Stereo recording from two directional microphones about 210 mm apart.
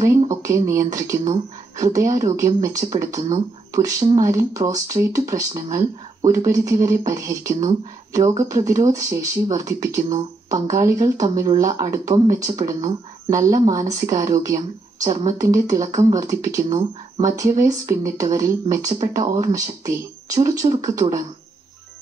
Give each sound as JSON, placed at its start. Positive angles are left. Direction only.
{"t": 0.0, "sound": "speech", "side_deg": -15}